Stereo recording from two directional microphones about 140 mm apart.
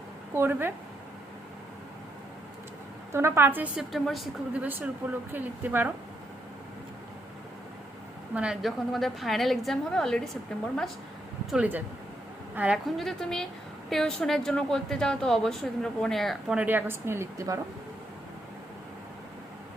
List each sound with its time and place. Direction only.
0.3 s a woman's voice: 15° right (ahead or behind)
3.1 s a woman's voice: 20° right (ahead or behind)
3.9 s a woman's voice: centre (ahead or behind)
4.6 s a woman's voice: 15° right (ahead or behind)
8.4 s a woman's voice: 5° right (ahead or behind)
11.5 s a woman's voice: 10° right (ahead or behind)